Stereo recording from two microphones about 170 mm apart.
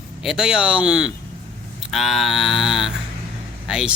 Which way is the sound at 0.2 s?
Centre (ahead or behind).